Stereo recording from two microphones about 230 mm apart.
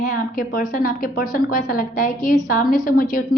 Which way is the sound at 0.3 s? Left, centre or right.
Left.